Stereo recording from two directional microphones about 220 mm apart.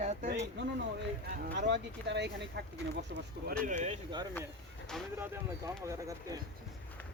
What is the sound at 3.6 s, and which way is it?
Speech, 30° right (ahead or behind).